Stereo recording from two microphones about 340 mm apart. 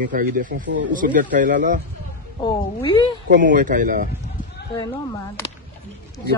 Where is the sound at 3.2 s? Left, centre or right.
Right.